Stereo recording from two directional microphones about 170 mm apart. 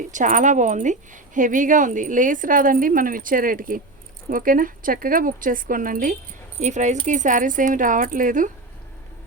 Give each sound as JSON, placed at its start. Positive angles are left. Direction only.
{"t": 0.1, "sound": "speech", "side_deg": -50}